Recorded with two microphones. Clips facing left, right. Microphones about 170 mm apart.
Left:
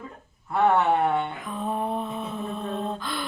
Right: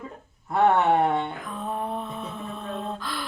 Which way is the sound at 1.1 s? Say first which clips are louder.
Even; centre (ahead or behind).